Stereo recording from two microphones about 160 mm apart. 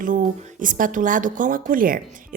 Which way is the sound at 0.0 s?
55° right (ahead or behind).